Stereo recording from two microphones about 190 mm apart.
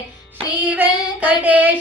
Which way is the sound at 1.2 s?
10° right (ahead or behind).